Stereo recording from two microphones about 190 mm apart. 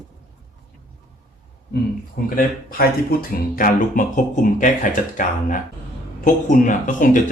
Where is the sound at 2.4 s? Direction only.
50° left (ahead or behind).